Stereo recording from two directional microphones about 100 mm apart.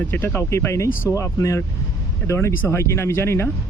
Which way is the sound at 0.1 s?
25° left (ahead or behind).